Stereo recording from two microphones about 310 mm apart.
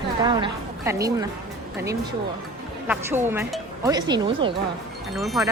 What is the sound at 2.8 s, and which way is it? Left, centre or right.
Speech, centre.